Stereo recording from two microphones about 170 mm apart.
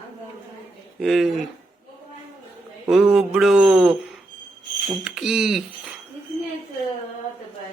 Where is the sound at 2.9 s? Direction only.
Centre (ahead or behind).